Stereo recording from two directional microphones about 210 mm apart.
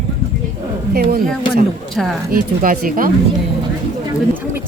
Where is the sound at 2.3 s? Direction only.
40° right (ahead or behind).